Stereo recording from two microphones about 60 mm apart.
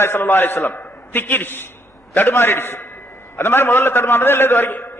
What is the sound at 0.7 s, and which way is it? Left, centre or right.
Speech, left.